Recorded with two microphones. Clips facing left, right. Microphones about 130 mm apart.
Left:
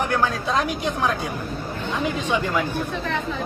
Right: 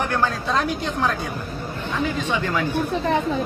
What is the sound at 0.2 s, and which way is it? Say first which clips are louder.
Speech: even; 15° left (ahead or behind).